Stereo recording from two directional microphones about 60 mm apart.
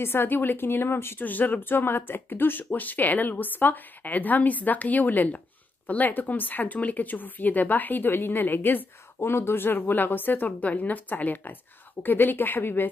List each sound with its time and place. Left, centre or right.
0.0 s speech: left
1.2 s speech: left